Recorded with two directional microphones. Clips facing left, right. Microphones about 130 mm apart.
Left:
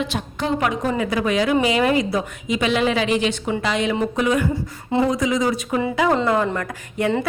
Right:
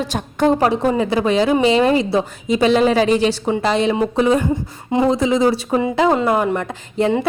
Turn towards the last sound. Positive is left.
turn(degrees=-25)  # may be behind; listen again after turning